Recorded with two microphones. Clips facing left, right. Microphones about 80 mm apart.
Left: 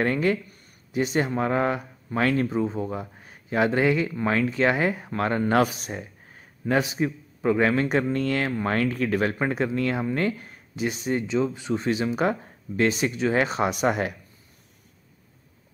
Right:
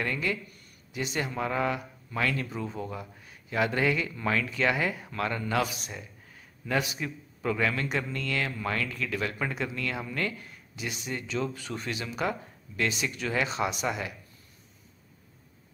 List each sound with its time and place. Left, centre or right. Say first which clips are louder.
0.0 s speech: left 8 dB; left
11.2 s speech: left 7 dB; centre; by 13.1 s left
13.1 s speech: left 8 dB; left
13.4 s speech: left 3 dB; left